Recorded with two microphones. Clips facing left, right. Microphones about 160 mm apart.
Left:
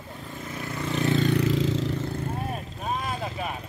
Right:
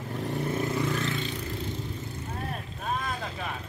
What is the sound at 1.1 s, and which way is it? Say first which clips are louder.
Vehicle: left 11 dB; 60° left (ahead or behind).